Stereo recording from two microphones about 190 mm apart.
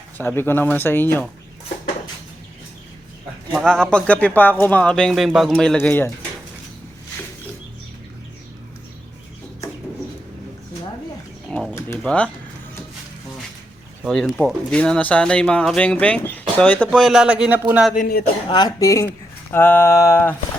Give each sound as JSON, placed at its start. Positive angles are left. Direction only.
{"t": 0.2, "sound": "speech", "side_deg": 10}
{"t": 3.5, "sound": "speech", "side_deg": 5}
{"t": 11.4, "sound": "bird", "side_deg": 0}
{"t": 11.7, "sound": "pigeon", "side_deg": 10}
{"t": 14.0, "sound": "speech", "side_deg": 5}
{"t": 17.9, "sound": "a man's voice", "side_deg": 45}
{"t": 18.4, "sound": "speech", "side_deg": 25}